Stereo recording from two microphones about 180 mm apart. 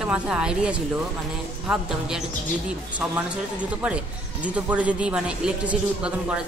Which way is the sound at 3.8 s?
5° right (ahead or behind).